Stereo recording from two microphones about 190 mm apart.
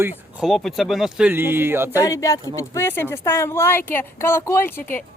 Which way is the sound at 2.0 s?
15° left (ahead or behind).